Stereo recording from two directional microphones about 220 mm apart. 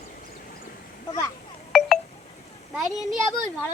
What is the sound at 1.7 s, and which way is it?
Telephone dialing, centre (ahead or behind).